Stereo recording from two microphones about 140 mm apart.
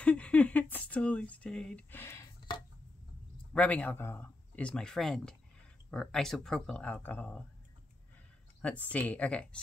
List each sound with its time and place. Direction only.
0.0 s a sound: 10° left (ahead or behind)
3.5 s speech: 10° left (ahead or behind)
8.9 s speech: 10° left (ahead or behind)